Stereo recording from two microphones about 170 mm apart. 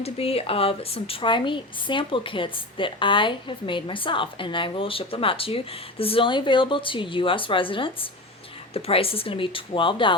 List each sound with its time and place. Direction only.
0.0 s a woman's voice: 35° left (ahead or behind)